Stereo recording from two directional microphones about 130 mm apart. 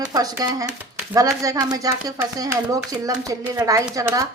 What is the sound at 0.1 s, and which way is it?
A woman's voice, 30° right (ahead or behind).